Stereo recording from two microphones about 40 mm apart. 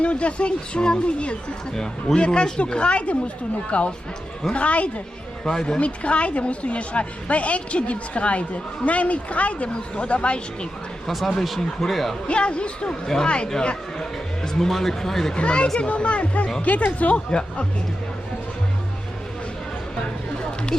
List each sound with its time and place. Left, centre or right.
0.0 s speech: left
1.7 s speech: centre
2.1 s a woman's voice: left
5.5 s speech: centre
5.8 s a woman's voice: left
11.0 s speech: centre
12.3 s speech: left
12.9 s speech: centre
13.2 s speech: left
14.5 s speech: centre
15.4 s a woman's voice: left